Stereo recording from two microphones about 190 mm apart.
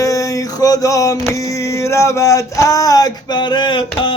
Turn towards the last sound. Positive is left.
turn(degrees=25)  # may be behind; listen again after turning